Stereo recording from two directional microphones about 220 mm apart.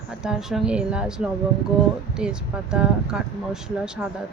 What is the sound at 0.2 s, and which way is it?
Speech, centre (ahead or behind).